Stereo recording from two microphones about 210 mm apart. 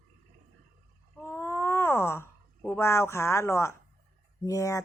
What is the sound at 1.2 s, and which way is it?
Speech, 10° left (ahead or behind).